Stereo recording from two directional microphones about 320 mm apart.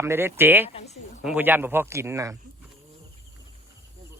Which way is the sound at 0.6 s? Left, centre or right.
Centre.